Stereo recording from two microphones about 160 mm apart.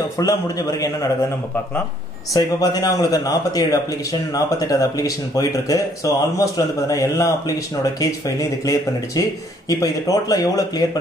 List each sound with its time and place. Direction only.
0.2 s a man's voice: 20° left (ahead or behind)
2.3 s a man's voice: 25° left (ahead or behind)